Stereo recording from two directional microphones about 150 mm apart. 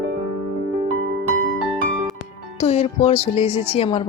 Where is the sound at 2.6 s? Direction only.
45° left (ahead or behind).